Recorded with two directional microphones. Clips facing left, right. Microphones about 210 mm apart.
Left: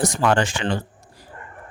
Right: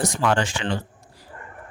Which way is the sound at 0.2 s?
50° left (ahead or behind).